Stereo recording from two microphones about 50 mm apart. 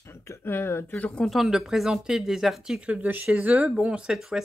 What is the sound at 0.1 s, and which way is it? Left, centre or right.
Speech, left.